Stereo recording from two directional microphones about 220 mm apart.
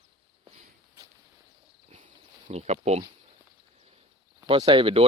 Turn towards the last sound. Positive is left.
turn(degrees=-25)  # may be behind; listen again after turning